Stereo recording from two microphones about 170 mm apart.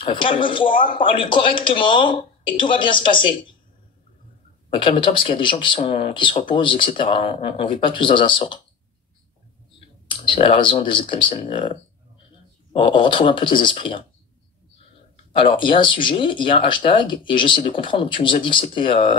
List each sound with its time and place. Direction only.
0.0 s speech: 30° left (ahead or behind)
4.8 s speech: 30° left (ahead or behind)
10.0 s speech: 30° left (ahead or behind)
15.3 s speech: 30° left (ahead or behind)